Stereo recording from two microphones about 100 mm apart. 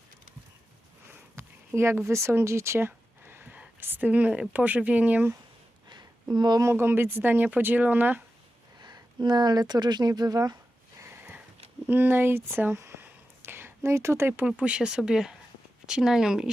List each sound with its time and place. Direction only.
1.4 s a sound: 25° right (ahead or behind)
2.0 s speech: 25° right (ahead or behind)
5.9 s a sound: 45° right (ahead or behind)
6.6 s speech: 25° right (ahead or behind)
8.8 s speech: 45° right (ahead or behind)
11.1 s sniff: 20° right (ahead or behind)
11.9 s speech: 20° right (ahead or behind)
14.4 s speech: 10° right (ahead or behind)